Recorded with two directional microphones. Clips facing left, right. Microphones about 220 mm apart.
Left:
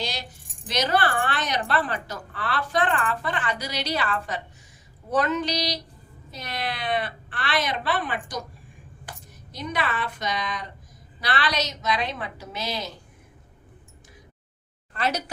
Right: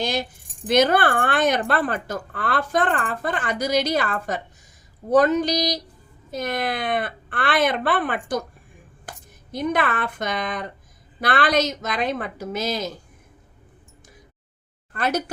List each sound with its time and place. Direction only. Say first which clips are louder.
0.0 s keys jangling: right 8 dB; 50° right (ahead or behind)
0.7 s a woman's voice: right 6 dB; 50° right (ahead or behind)
14.9 s a woman's voice: right 3 dB; 50° right (ahead or behind)